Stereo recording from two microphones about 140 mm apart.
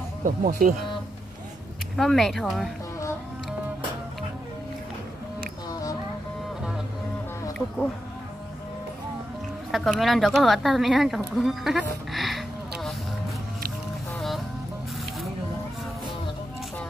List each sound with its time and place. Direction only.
0.2 s speech: 70° right (ahead or behind)
2.0 s speech: centre (ahead or behind)
5.7 s music: 25° left (ahead or behind)
9.7 s speech: centre (ahead or behind)
14.1 s music: centre (ahead or behind)